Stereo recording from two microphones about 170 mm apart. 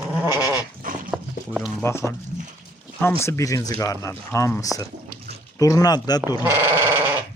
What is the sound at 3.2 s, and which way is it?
Speech, 15° left (ahead or behind).